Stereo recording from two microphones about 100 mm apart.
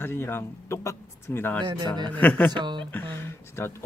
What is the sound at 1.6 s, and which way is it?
Speech, 50° right (ahead or behind).